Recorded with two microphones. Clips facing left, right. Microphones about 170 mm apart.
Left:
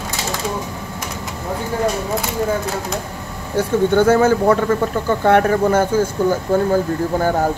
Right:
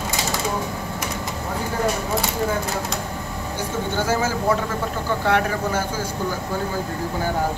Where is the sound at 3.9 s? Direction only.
60° left (ahead or behind).